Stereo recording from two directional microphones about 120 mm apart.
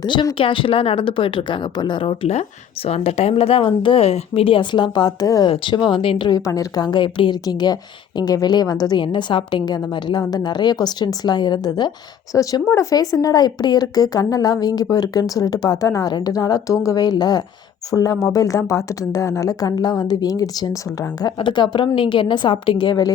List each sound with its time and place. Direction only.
0.0 s a woman's voice: 40° left (ahead or behind)
21.3 s speech: 40° left (ahead or behind)